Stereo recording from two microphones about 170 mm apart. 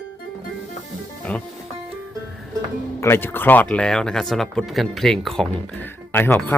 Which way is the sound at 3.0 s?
15° left (ahead or behind).